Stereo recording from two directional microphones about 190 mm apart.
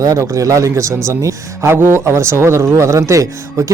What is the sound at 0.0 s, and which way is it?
Speech, 15° right (ahead or behind).